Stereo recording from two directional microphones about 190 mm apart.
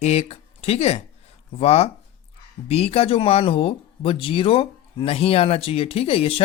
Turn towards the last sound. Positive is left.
turn(degrees=30)  # may be behind; listen again after turning